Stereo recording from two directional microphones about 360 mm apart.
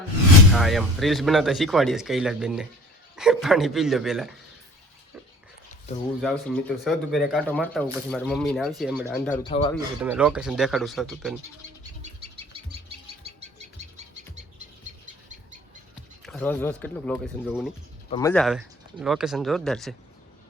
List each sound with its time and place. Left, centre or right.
0.5 s speech: centre
6.2 s speech: centre
9.3 s speech: centre
10.0 s speech: centre
16.2 s speech: centre